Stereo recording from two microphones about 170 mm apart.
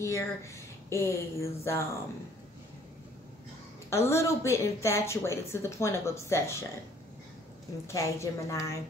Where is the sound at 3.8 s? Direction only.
15° left (ahead or behind).